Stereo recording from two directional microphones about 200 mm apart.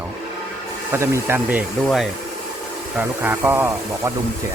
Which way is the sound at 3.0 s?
10° right (ahead or behind).